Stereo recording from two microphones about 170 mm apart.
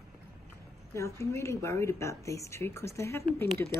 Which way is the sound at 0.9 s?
15° left (ahead or behind).